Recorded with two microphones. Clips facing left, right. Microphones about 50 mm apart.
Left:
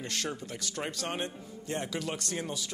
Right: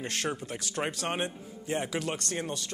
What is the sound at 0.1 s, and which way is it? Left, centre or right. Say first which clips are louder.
Speech: right 3 dB; right.